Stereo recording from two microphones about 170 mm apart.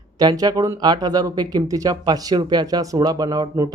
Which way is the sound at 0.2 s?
25° right (ahead or behind).